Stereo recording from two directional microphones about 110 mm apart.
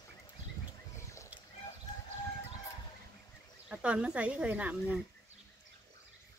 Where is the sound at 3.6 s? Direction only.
10° right (ahead or behind).